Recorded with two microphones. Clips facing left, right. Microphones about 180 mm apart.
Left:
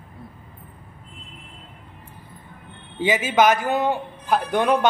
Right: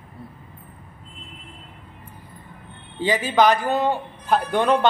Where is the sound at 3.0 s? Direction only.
20° left (ahead or behind).